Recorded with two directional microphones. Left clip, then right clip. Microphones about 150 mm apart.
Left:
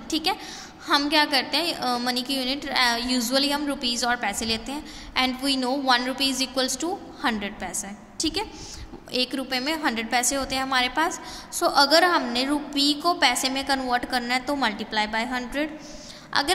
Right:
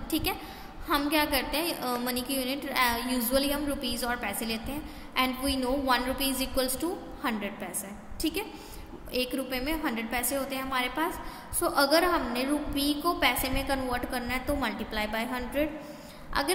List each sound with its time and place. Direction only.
0.1 s a woman's voice: 25° left (ahead or behind)